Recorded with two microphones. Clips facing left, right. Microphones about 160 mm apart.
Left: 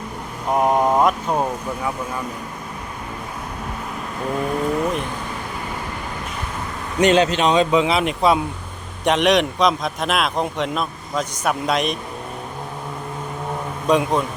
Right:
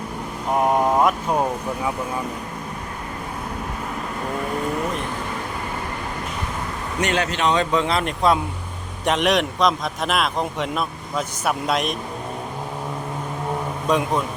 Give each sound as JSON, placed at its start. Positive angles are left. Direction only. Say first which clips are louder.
{"t": 0.6, "sound": "a man's voice", "louder": "left 1 dB", "side_deg": 5}
{"t": 7.0, "sound": "a man's voice", "louder": "left 6 dB", "side_deg": 20}
{"t": 13.8, "sound": "speech", "louder": "left 3 dB", "side_deg": 0}